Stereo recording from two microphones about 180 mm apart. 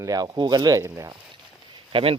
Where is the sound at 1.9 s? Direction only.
30° right (ahead or behind).